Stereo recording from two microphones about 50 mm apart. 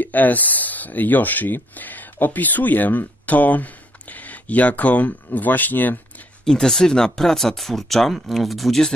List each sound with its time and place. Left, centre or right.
0.0 s speech: left
6.4 s speech: centre